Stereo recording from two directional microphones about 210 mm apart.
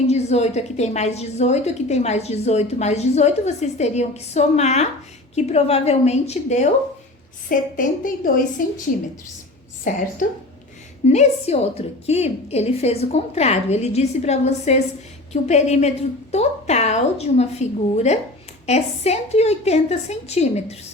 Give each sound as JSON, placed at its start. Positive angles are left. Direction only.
{"t": 0.1, "sound": "a woman's voice", "side_deg": 30}
{"t": 11.0, "sound": "a woman's voice", "side_deg": 30}